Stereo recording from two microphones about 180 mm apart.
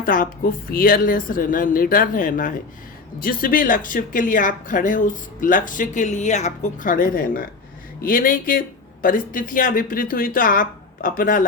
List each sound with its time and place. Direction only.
0.0 s speech: 50° left (ahead or behind)